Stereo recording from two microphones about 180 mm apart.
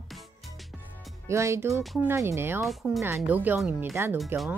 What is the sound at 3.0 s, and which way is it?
Speech, 10° right (ahead or behind).